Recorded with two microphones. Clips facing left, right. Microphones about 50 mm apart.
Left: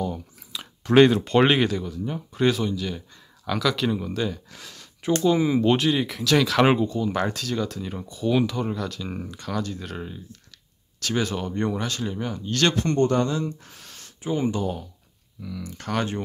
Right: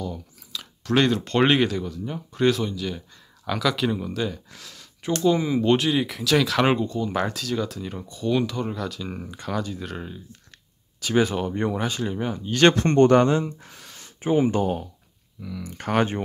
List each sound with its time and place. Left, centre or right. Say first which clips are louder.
0.0 s speech: left 3 dB; left; by 10.2 s centre
11.1 s speech: right 4 dB; centre
12.6 s speech: right 5 dB; right
13.5 s a sound: left 2 dB; centre
14.5 s speech: right 4 dB; right
15.6 s speech: right 4 dB; right